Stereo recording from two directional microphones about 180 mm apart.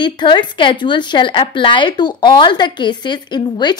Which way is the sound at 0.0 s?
25° left (ahead or behind).